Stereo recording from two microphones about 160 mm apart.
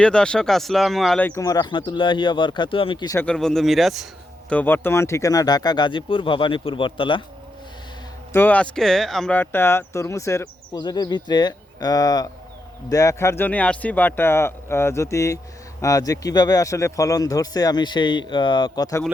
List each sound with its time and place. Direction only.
0.0 s speech: 5° left (ahead or behind)
1.3 s speech: 20° left (ahead or behind)
3.2 s a man's voice: 5° left (ahead or behind)
4.5 s speech: 10° left (ahead or behind); by 7.2 s 30° left (ahead or behind)
8.3 s speech: 10° left (ahead or behind)